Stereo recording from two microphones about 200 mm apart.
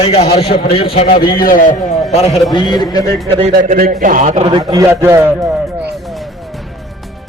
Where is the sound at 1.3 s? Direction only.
45° left (ahead or behind).